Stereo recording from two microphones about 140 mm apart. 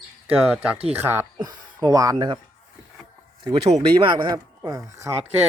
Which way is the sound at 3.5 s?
45° right (ahead or behind).